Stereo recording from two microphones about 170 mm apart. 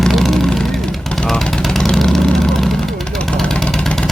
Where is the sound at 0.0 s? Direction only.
Centre (ahead or behind).